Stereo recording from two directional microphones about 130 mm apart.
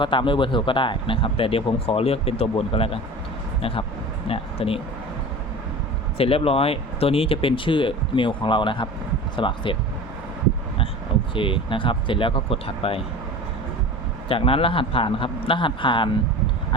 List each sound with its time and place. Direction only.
0.0 s speech: 40° left (ahead or behind)
6.1 s speech: 45° left (ahead or behind)
11.3 s speech: 40° left (ahead or behind)
14.3 s speech: 45° left (ahead or behind)